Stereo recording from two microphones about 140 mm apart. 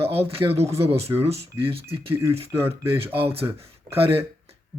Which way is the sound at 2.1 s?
20° right (ahead or behind).